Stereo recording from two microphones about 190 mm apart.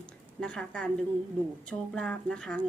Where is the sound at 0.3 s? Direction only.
5° left (ahead or behind).